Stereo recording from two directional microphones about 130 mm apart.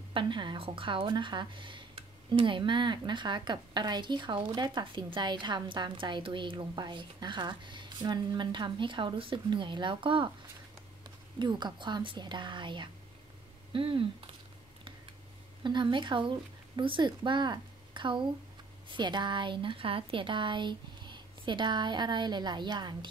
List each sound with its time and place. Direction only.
0.1 s speech: 35° right (ahead or behind)
11.3 s speech: 35° right (ahead or behind)
15.6 s speech: 35° right (ahead or behind)